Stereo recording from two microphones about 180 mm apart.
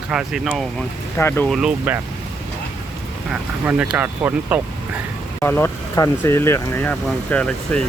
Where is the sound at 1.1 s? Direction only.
15° left (ahead or behind).